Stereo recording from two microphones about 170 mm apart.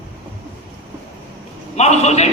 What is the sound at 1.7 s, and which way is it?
Speech, 40° left (ahead or behind).